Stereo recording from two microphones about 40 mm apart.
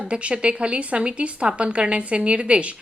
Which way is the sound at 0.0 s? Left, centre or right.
Right.